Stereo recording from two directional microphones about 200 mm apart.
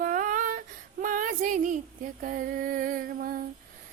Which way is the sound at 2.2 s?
45° right (ahead or behind).